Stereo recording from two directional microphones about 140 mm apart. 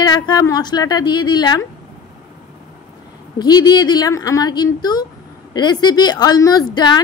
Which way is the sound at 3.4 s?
30° left (ahead or behind).